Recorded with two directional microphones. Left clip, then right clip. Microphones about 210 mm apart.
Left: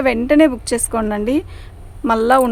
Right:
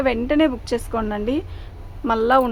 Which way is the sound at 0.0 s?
50° left (ahead or behind).